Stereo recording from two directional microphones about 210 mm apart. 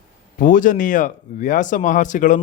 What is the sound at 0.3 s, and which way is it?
Speech, 40° left (ahead or behind).